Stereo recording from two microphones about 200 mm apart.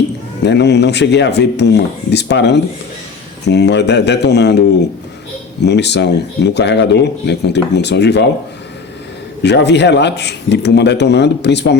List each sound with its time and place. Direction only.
0.4 s speech: 60° left (ahead or behind)
5.6 s speech: 60° left (ahead or behind)
9.4 s speech: 60° left (ahead or behind)